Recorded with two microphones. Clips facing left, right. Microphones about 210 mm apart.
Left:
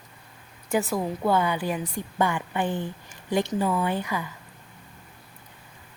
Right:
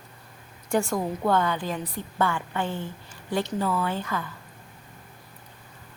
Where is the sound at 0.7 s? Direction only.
Centre (ahead or behind).